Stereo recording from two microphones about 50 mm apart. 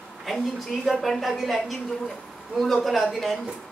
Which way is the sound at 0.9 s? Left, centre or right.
Centre.